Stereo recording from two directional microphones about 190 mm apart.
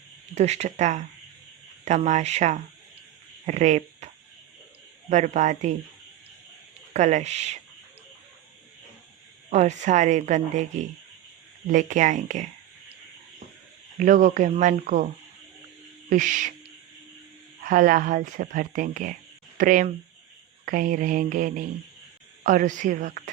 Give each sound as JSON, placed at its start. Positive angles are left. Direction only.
{"t": 0.3, "sound": "speech", "side_deg": -35}
{"t": 6.9, "sound": "speech", "side_deg": -40}
{"t": 9.5, "sound": "speech", "side_deg": -40}
{"t": 14.0, "sound": "speech", "side_deg": -40}
{"t": 16.0, "sound": "speech", "side_deg": -40}
{"t": 17.6, "sound": "speech", "side_deg": -45}